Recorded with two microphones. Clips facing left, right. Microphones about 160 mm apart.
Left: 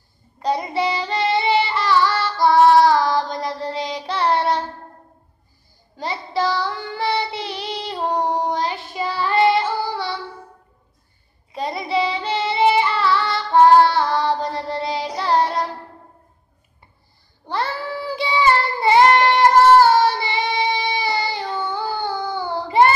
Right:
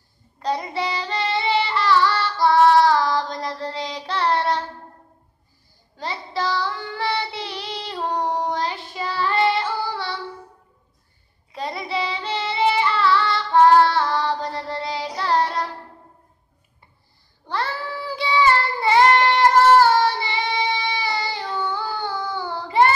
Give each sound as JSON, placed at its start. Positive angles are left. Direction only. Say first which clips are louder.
{"t": 0.4, "sound": "child singing", "louder": "left 3 dB", "side_deg": 15}
{"t": 5.9, "sound": "child singing", "louder": "left 4 dB", "side_deg": 15}
{"t": 11.5, "sound": "child singing", "louder": "left 4 dB", "side_deg": 15}
{"t": 17.5, "sound": "child singing", "louder": "left 2 dB", "side_deg": 15}